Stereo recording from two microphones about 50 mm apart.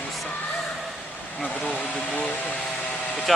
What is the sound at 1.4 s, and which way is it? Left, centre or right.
Speech, left.